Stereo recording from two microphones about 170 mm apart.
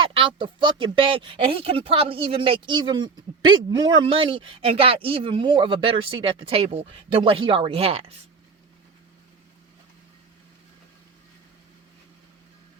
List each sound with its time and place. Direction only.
0.0 s speech: 30° right (ahead or behind)